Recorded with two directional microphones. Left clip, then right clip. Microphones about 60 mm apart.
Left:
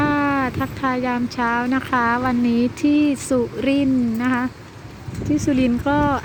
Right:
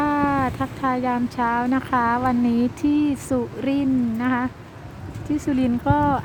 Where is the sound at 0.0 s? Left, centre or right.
Centre.